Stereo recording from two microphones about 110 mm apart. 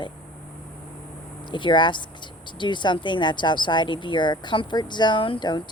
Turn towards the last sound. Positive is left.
turn(degrees=45)  # may be behind; listen again after turning